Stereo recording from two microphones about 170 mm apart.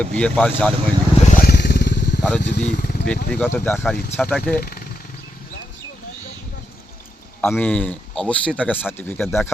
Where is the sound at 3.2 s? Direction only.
10° left (ahead or behind).